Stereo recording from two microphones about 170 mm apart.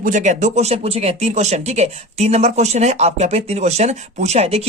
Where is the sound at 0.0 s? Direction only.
45° right (ahead or behind).